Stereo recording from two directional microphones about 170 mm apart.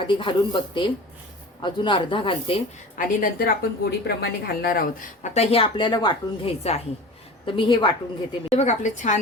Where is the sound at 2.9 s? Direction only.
55° left (ahead or behind).